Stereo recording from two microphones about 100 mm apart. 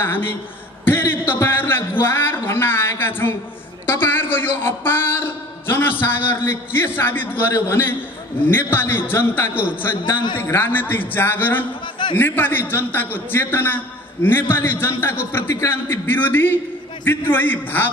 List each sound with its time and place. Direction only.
0.0 s a man's voice: 20° left (ahead or behind)